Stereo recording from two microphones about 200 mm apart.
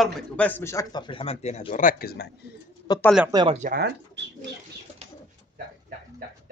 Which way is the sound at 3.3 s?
25° right (ahead or behind).